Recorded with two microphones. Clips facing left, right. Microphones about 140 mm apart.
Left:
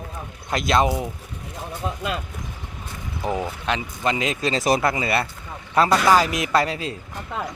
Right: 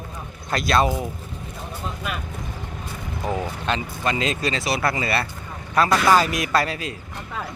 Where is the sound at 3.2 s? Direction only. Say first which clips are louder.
Left 1 dB; 20° left (ahead or behind).